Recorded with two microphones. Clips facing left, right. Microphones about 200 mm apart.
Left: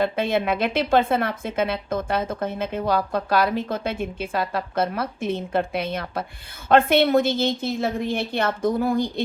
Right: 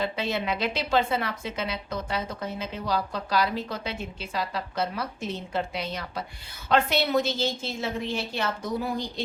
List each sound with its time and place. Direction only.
0.0 s a woman's voice: 55° left (ahead or behind)